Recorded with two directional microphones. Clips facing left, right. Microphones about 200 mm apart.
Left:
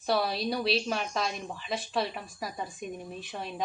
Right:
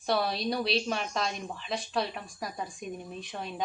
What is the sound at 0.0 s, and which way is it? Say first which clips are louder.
A woman's voice: left 1 dB; centre (ahead or behind).